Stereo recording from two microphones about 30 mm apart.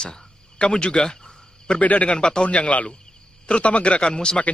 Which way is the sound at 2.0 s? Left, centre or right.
Left.